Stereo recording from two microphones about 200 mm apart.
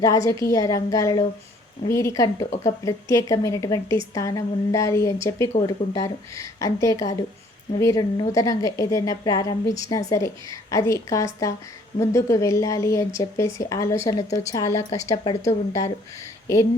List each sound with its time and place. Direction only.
0.0 s a woman's voice: 15° left (ahead or behind)